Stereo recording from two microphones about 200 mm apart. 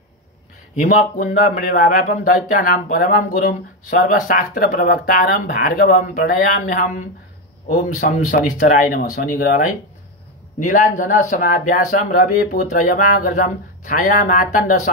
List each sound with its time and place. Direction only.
0.7 s speech: 40° left (ahead or behind)